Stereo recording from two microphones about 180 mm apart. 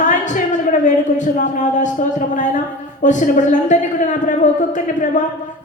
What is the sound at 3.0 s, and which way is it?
A man's voice, 45° left (ahead or behind).